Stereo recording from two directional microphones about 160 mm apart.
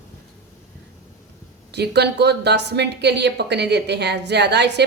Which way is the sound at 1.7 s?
90° right.